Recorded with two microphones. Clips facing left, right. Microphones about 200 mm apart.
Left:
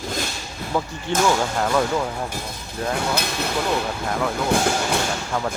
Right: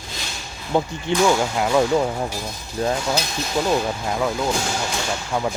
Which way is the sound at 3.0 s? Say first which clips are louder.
Even; 60° left (ahead or behind).